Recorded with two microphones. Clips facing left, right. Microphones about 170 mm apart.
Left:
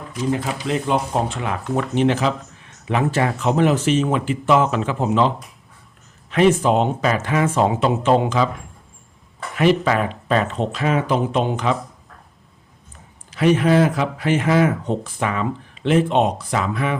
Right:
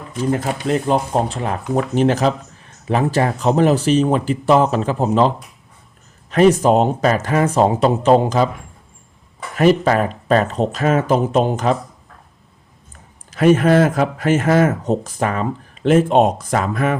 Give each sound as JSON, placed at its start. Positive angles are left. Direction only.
{"t": 0.3, "sound": "speech", "side_deg": -45}
{"t": 2.6, "sound": "a sound", "side_deg": -35}
{"t": 3.1, "sound": "speech", "side_deg": -40}
{"t": 6.3, "sound": "speech", "side_deg": -40}
{"t": 9.8, "sound": "speech", "side_deg": -40}
{"t": 13.3, "sound": "speech", "side_deg": -45}